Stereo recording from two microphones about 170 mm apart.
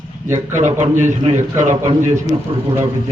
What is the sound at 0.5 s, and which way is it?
A man's voice, 45° right (ahead or behind).